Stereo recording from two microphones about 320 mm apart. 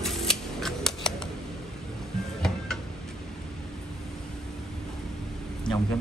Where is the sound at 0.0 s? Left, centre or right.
Centre.